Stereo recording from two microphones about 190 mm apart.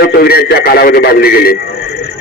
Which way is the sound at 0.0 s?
55° left (ahead or behind).